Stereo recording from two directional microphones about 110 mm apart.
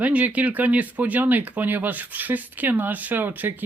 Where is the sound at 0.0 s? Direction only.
15° right (ahead or behind).